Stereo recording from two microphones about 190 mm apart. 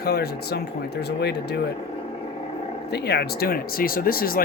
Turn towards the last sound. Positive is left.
turn(degrees=50)  # may be behind; listen again after turning